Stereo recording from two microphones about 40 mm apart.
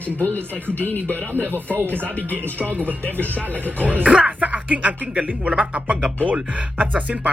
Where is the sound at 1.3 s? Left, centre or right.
Right.